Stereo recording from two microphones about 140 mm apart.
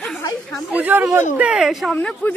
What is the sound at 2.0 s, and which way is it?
Speech, 10° left (ahead or behind).